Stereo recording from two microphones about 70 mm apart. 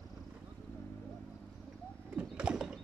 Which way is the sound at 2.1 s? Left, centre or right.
Centre.